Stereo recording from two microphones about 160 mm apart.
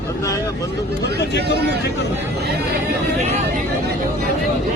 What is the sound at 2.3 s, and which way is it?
Speech, 90° right.